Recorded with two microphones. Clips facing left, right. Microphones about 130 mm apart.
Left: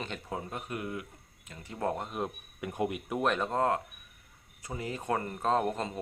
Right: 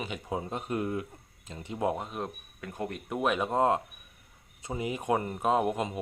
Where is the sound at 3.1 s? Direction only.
5° right (ahead or behind).